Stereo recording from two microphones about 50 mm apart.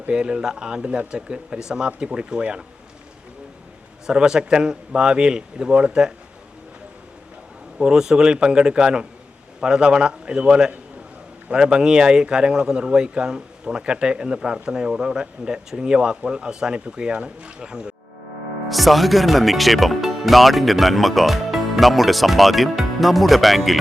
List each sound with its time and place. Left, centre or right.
0.1 s speech: centre
4.0 s speech: centre
7.8 s speech: centre
18.7 s speech: centre